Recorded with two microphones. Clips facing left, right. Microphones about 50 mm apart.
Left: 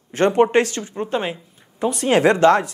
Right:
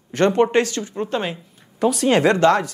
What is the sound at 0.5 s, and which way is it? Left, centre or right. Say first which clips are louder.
Speech: left 1 dB; left.